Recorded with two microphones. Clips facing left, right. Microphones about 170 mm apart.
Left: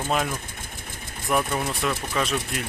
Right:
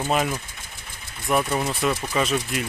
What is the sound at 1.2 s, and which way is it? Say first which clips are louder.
Speech: right 2 dB; centre (ahead or behind).